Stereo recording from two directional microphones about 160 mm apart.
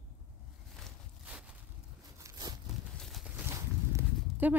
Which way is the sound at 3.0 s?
Centre (ahead or behind).